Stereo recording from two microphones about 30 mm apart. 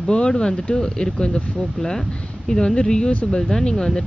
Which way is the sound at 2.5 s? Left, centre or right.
Left.